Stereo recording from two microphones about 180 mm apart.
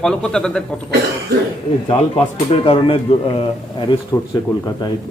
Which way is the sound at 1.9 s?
30° left (ahead or behind).